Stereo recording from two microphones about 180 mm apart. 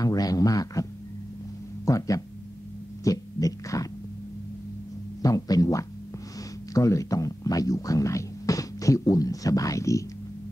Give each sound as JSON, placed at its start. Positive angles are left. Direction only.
{"t": 0.0, "sound": "a man's voice", "side_deg": 20}
{"t": 1.9, "sound": "a man's voice", "side_deg": 20}
{"t": 5.2, "sound": "a man's voice", "side_deg": 20}